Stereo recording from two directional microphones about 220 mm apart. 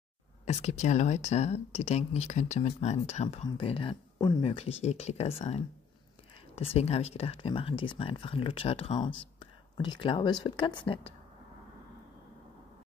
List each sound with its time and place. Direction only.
0.5 s speech: 30° left (ahead or behind)
9.4 s a sound: 20° left (ahead or behind)
10.4 s speech: 20° left (ahead or behind)